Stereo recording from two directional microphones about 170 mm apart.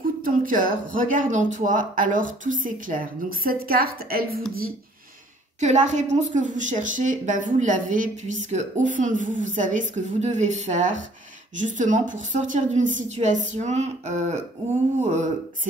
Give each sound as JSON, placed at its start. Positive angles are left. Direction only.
{"t": 0.2, "sound": "speech", "side_deg": -55}
{"t": 5.6, "sound": "speech", "side_deg": -45}